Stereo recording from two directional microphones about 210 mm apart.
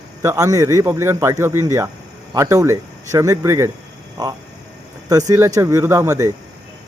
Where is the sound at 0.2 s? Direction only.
15° right (ahead or behind).